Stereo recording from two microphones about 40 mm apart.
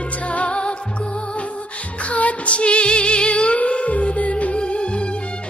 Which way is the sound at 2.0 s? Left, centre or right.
Left.